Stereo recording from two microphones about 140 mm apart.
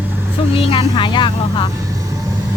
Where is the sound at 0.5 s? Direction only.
40° left (ahead or behind).